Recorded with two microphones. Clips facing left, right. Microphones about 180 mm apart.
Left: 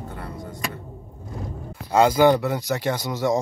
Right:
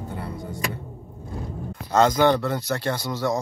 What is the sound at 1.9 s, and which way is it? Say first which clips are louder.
Speech: left 2 dB; 10° left (ahead or behind).